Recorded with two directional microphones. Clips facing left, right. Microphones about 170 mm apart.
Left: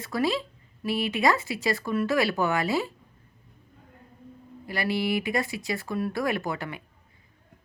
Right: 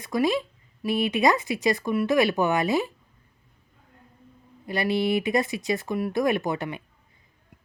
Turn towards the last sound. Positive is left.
turn(degrees=-20)  # may be behind; listen again after turning